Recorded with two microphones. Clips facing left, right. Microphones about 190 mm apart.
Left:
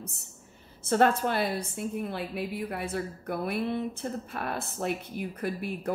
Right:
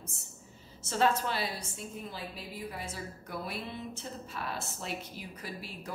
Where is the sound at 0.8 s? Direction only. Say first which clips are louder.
Left 5 dB; 55° left (ahead or behind).